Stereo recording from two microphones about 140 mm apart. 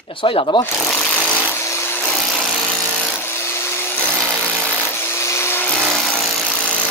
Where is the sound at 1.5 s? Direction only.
20° left (ahead or behind).